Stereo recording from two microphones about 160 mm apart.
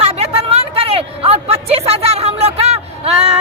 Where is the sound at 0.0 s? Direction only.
40° right (ahead or behind).